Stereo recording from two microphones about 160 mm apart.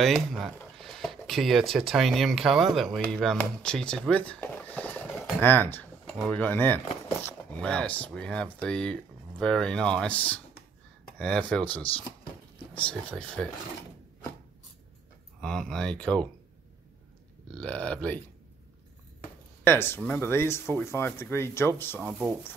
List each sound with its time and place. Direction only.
0.0 s speech: centre (ahead or behind)
13.4 s speech: 5° left (ahead or behind)
15.4 s speech: 5° left (ahead or behind)
17.6 s speech: 5° left (ahead or behind)
19.6 s speech: 15° left (ahead or behind)